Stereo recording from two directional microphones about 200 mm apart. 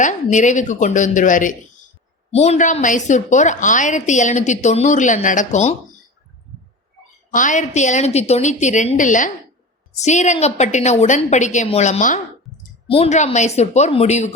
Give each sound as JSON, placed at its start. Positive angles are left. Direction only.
{"t": 0.0, "sound": "a woman's voice", "side_deg": 40}
{"t": 7.3, "sound": "a woman's voice", "side_deg": 40}